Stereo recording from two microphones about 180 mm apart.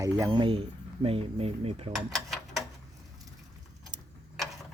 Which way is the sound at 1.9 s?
Centre (ahead or behind).